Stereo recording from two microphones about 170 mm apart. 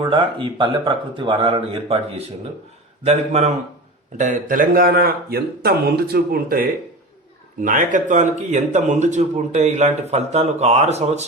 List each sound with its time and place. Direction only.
0.0 s a man's voice: 30° right (ahead or behind)
4.2 s speech: 50° right (ahead or behind)
7.6 s speech: 50° right (ahead or behind)